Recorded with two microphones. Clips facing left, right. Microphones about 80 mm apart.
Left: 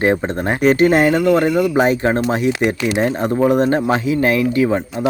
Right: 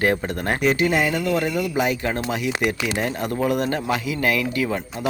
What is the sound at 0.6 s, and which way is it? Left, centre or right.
Speech, left.